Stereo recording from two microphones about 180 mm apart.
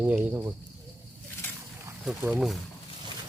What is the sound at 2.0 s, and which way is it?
Speech, 5° right (ahead or behind).